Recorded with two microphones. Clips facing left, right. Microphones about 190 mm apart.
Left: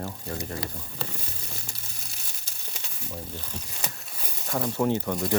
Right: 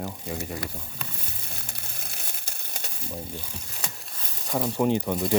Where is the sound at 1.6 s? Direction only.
55° right (ahead or behind).